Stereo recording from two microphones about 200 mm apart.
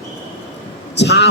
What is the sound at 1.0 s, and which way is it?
Speech, 55° left (ahead or behind).